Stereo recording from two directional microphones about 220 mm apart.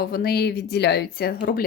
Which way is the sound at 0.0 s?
45° left (ahead or behind).